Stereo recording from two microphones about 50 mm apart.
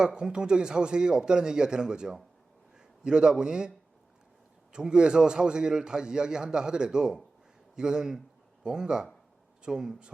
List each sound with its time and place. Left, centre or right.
0.0 s a man's voice: centre
4.7 s a man's voice: centre